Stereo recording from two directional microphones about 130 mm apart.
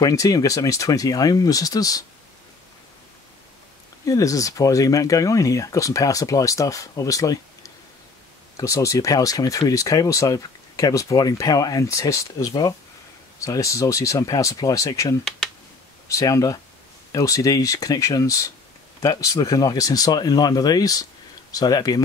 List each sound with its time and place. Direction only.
0.0 s speech: 25° left (ahead or behind)
4.0 s speech: 25° left (ahead or behind)